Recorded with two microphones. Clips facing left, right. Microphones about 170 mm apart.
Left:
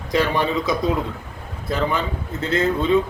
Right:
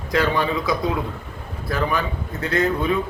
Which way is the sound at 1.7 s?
25° left (ahead or behind).